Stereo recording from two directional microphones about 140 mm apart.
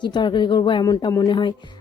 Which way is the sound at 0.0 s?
35° left (ahead or behind).